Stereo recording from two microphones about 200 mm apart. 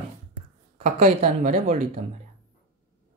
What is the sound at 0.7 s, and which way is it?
Speech, 35° right (ahead or behind).